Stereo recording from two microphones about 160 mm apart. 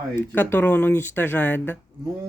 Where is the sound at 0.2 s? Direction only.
10° left (ahead or behind).